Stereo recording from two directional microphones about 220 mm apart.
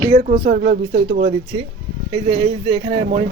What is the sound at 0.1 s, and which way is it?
Speech, 35° right (ahead or behind).